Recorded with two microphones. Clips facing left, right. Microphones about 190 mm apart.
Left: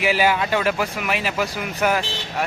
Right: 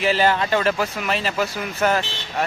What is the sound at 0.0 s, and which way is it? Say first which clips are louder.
Speech: even; 10° left (ahead or behind).